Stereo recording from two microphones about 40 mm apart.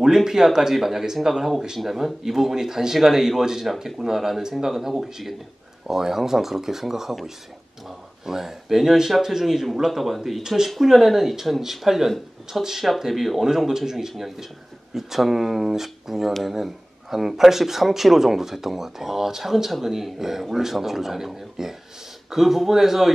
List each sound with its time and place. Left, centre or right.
0.0 s speech: centre
3.6 s speech: centre